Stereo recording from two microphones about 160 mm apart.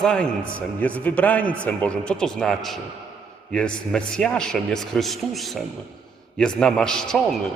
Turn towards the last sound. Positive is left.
turn(degrees=5)  # may be behind; listen again after turning